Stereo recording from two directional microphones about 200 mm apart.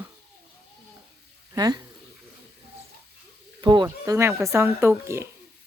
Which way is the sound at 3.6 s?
25° right (ahead or behind).